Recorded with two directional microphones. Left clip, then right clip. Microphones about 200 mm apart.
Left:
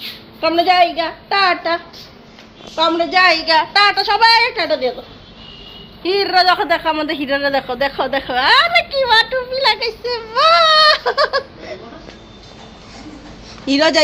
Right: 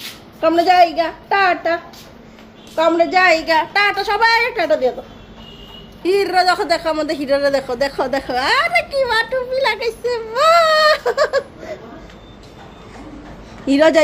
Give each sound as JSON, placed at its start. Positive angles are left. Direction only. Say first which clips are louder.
{"t": 0.8, "sound": "a woman's voice", "louder": "right 1 dB", "side_deg": -20}
{"t": 6.1, "sound": "a woman's voice", "louder": "left 1 dB", "side_deg": -10}
{"t": 13.7, "sound": "a woman's voice", "louder": "right 1 dB", "side_deg": -10}